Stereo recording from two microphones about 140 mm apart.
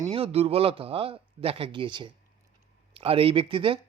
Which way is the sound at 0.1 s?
45° right (ahead or behind).